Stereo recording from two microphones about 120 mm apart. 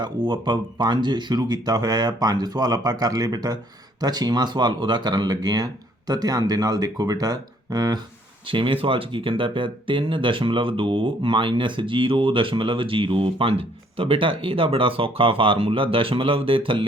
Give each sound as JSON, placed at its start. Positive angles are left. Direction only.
{"t": 0.0, "sound": "speech", "side_deg": -35}
{"t": 8.4, "sound": "speech", "side_deg": -45}